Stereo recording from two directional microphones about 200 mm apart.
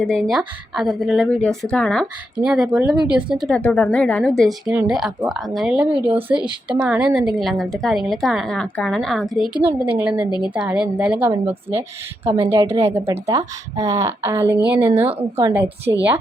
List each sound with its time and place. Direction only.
0.0 s a woman's voice: 5° left (ahead or behind); by 16.0 s 20° right (ahead or behind)